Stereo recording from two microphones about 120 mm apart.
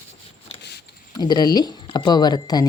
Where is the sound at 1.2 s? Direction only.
35° left (ahead or behind).